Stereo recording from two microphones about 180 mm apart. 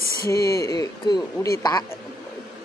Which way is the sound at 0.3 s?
15° left (ahead or behind).